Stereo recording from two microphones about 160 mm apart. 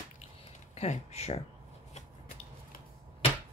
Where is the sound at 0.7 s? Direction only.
45° left (ahead or behind).